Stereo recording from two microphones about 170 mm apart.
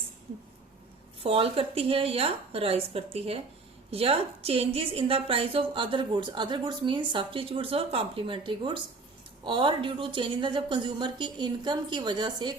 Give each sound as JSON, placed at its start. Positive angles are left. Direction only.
{"t": 1.2, "sound": "a woman's voice", "side_deg": -35}